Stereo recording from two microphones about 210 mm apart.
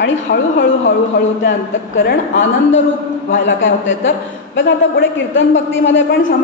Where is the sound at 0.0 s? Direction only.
55° left (ahead or behind).